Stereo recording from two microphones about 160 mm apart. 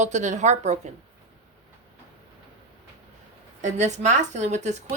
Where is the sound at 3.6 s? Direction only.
45° right (ahead or behind).